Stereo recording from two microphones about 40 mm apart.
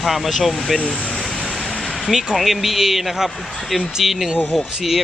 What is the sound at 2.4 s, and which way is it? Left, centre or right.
Speech, centre.